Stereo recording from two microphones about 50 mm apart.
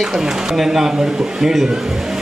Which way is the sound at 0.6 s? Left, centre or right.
Centre.